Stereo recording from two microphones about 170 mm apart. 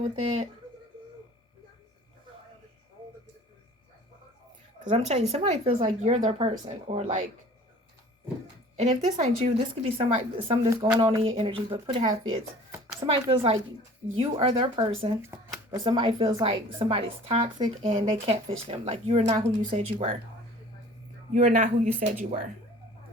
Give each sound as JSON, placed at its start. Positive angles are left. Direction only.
{"t": 0.0, "sound": "a woman's voice", "side_deg": -40}
{"t": 4.8, "sound": "a woman's voice", "side_deg": -45}
{"t": 8.7, "sound": "a woman's voice", "side_deg": -40}
{"t": 10.9, "sound": "speech", "side_deg": -20}
{"t": 11.2, "sound": "a woman's voice", "side_deg": -30}
{"t": 21.3, "sound": "speech", "side_deg": -45}